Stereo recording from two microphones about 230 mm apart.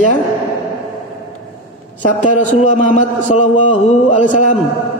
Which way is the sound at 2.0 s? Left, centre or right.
Left.